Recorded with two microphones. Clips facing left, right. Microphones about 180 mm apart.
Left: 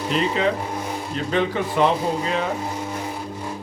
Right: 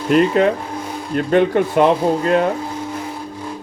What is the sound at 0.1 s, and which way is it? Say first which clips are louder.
A man's voice: right 8 dB; 55° right (ahead or behind).